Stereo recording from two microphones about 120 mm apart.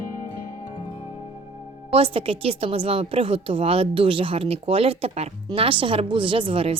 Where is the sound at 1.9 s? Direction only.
50° right (ahead or behind).